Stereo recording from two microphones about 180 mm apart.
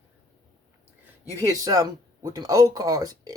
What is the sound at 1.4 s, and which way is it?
Speech, 20° right (ahead or behind).